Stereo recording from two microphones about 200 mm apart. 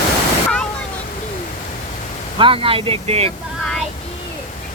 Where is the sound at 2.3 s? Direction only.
25° right (ahead or behind).